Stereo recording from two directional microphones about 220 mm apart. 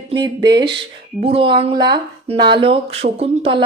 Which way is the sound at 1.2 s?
25° right (ahead or behind).